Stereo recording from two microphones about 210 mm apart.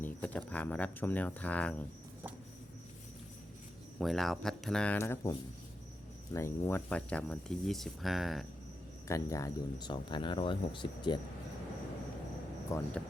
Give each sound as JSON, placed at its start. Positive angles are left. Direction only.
{"t": 0.0, "sound": "speech", "side_deg": 5}
{"t": 4.0, "sound": "speech", "side_deg": 0}
{"t": 9.0, "sound": "speech", "side_deg": 15}
{"t": 12.6, "sound": "speech", "side_deg": 15}